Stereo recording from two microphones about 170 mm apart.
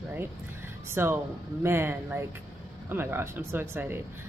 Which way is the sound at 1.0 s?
15° right (ahead or behind).